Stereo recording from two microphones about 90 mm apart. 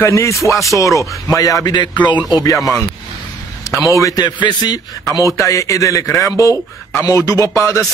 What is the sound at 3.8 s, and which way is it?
Speech, 35° left (ahead or behind).